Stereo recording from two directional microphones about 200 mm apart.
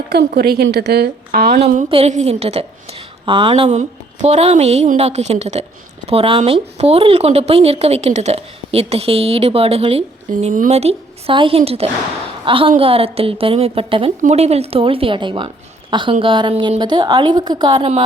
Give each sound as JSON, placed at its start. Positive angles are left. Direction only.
{"t": 0.1, "sound": "a woman's voice", "side_deg": -55}
{"t": 1.6, "sound": "a woman's voice", "side_deg": -30}